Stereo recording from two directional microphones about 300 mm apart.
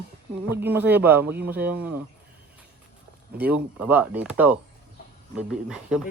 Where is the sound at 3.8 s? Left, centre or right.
Centre.